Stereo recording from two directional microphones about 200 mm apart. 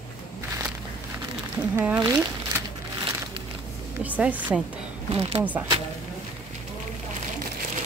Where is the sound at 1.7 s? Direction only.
10° right (ahead or behind).